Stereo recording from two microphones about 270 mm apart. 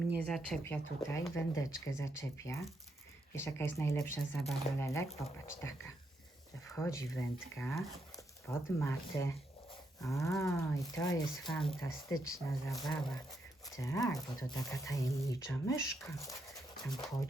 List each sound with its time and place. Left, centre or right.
0.2 s speech: centre